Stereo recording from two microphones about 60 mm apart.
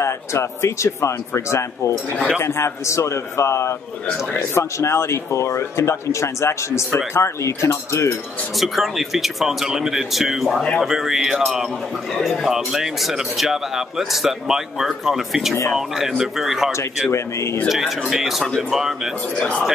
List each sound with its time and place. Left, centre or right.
0.0 s speech: left
8.5 s speech: centre
12.1 s speech: centre
17.1 s speech: left
17.6 s speech: centre
19.3 s speech: centre